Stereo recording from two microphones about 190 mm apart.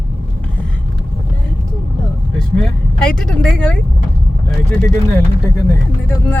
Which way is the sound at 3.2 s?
5° left (ahead or behind).